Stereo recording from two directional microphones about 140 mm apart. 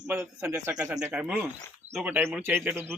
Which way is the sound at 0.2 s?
20° right (ahead or behind).